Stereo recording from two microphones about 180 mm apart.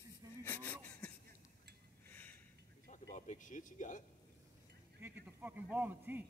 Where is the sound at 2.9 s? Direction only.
40° left (ahead or behind).